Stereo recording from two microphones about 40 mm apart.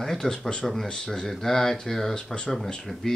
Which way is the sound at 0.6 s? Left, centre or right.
Centre.